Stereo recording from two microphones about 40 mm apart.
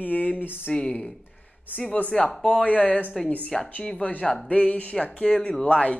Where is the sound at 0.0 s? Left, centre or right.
Left.